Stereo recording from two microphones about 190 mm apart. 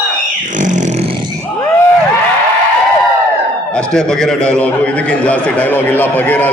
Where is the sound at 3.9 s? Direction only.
5° left (ahead or behind).